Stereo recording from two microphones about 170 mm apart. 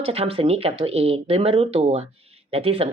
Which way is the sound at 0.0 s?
35° right (ahead or behind).